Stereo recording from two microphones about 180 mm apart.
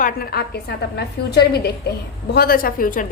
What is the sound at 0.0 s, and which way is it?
A woman's voice, 55° left (ahead or behind).